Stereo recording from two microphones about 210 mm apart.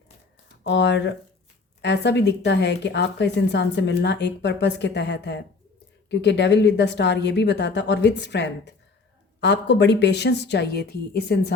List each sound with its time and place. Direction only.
0.7 s speech: 55° left (ahead or behind)